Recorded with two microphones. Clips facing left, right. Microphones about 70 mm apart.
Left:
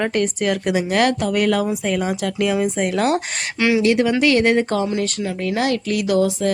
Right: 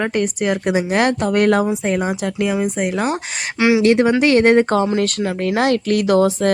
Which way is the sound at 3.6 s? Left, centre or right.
Centre.